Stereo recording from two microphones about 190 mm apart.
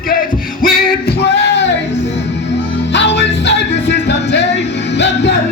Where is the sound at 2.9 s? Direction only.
65° left (ahead or behind).